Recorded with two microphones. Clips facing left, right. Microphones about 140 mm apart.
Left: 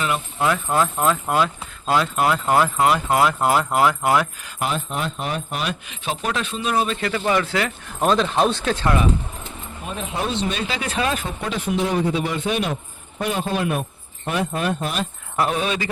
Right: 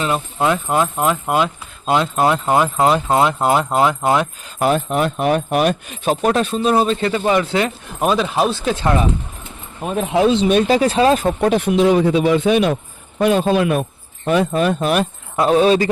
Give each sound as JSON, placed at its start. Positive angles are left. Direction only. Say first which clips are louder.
{"t": 0.0, "sound": "speech", "louder": "right 4 dB", "side_deg": -25}
{"t": 4.6, "sound": "speech", "louder": "right 8 dB", "side_deg": -50}
{"t": 8.0, "sound": "speech", "louder": "right 1 dB", "side_deg": -5}
{"t": 9.8, "sound": "speech", "louder": "right 10 dB", "side_deg": -50}
{"t": 10.1, "sound": "speech", "louder": "right 11 dB", "side_deg": -90}
{"t": 10.7, "sound": "speech", "louder": "right 10 dB", "side_deg": -35}
{"t": 11.3, "sound": "speech", "louder": "right 10 dB", "side_deg": -55}
{"t": 15.4, "sound": "speech", "louder": "right 9 dB", "side_deg": -30}